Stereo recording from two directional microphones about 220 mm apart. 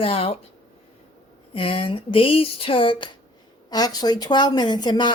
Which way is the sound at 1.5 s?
25° left (ahead or behind).